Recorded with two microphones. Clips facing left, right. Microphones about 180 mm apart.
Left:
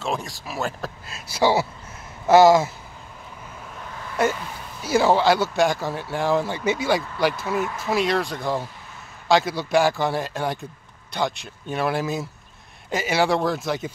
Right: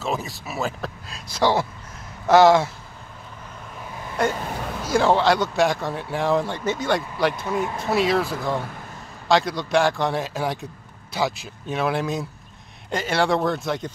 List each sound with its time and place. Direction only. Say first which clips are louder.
0.0 s speech: right 1 dB; 5° right (ahead or behind)
4.5 s a sound: right 8 dB; 75° right (ahead or behind)
4.9 s speech: left 1 dB; 5° left (ahead or behind)